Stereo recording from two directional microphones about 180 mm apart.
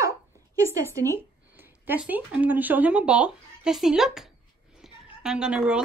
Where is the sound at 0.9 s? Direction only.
15° right (ahead or behind).